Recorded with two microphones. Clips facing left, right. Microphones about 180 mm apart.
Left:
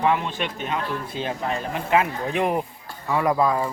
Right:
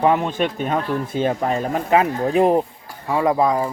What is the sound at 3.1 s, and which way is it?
Speech, 25° right (ahead or behind).